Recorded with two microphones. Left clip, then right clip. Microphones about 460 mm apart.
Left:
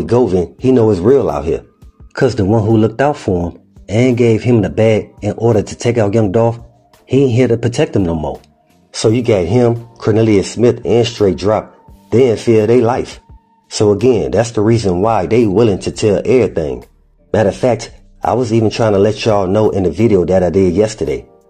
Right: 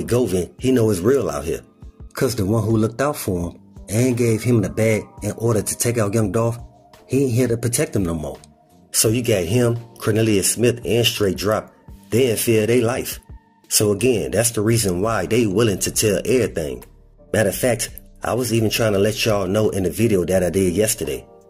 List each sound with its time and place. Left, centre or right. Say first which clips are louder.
0.2 s speech: left 8 dB; right